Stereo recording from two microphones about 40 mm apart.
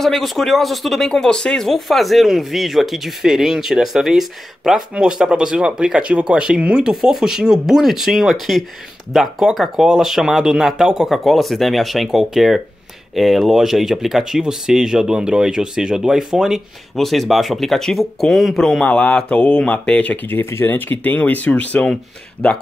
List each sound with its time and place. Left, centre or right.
0.0 s speech: centre
1.7 s speech: centre
5.1 s speech: right
7.0 s speech: centre
16.9 s speech: centre
18.9 s speech: left
20.2 s speech: left
22.4 s speech: left